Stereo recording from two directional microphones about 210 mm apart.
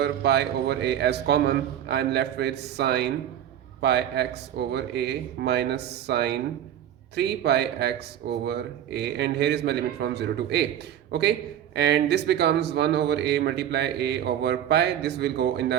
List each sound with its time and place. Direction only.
0.0 s speech: 50° right (ahead or behind)